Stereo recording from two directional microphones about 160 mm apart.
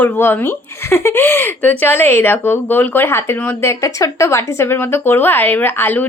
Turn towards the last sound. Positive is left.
turn(degrees=10)  # may be behind; listen again after turning